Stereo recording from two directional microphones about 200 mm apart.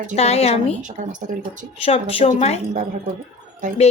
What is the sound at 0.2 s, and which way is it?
Speech, 30° left (ahead or behind).